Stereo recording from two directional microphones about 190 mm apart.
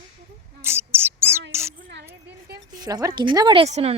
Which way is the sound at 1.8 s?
55° right (ahead or behind).